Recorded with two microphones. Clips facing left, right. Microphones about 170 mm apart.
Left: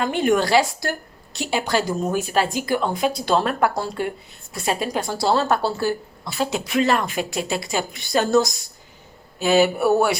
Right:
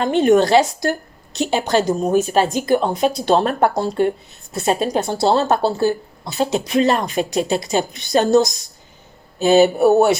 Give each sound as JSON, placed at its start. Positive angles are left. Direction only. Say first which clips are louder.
{"t": 0.0, "sound": "a woman's voice", "louder": "right 6 dB", "side_deg": -25}